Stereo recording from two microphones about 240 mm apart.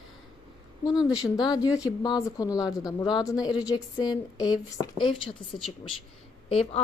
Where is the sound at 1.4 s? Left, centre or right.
Centre.